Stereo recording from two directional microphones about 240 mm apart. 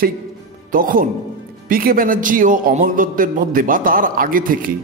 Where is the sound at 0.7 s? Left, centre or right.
Right.